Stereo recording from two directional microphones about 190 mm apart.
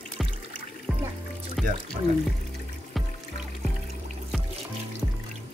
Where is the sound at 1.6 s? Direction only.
Centre (ahead or behind).